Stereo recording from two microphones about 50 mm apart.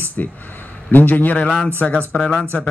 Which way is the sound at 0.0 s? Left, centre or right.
Left.